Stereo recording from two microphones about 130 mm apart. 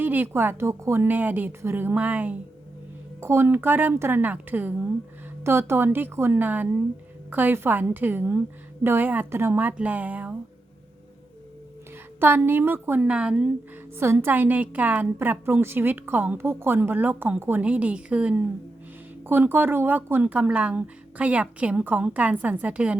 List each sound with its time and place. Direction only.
0.0 s a woman's voice: 15° right (ahead or behind)
12.2 s a woman's voice: 15° right (ahead or behind)